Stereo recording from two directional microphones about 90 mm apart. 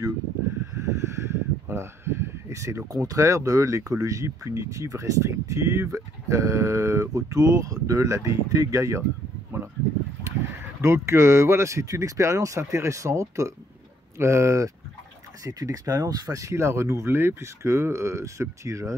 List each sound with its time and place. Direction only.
0.7 s a sound: 35° right (ahead or behind)
2.9 s speech: 40° right (ahead or behind)
10.8 s speech: 30° right (ahead or behind)